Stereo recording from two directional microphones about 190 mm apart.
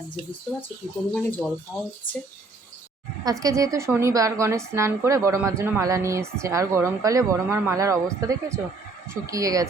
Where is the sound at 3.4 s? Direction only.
15° right (ahead or behind).